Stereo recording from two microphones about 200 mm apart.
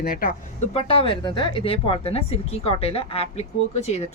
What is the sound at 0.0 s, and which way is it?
Speech, 45° left (ahead or behind).